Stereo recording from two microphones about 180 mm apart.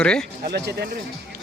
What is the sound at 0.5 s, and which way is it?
Speech, 70° right (ahead or behind).